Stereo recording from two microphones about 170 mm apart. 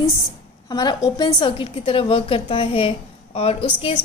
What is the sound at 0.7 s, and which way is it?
A woman's voice, 25° left (ahead or behind).